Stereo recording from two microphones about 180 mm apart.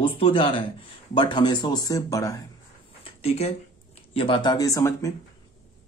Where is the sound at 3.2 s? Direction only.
35° left (ahead or behind); by 5.1 s 20° left (ahead or behind).